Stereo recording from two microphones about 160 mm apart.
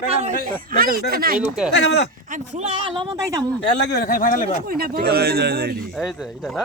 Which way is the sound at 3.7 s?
85° left.